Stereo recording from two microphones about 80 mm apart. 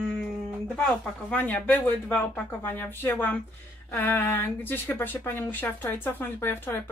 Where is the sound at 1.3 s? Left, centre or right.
Centre.